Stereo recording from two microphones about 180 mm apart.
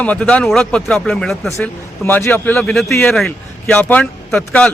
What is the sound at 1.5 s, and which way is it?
A man's voice, 15° left (ahead or behind).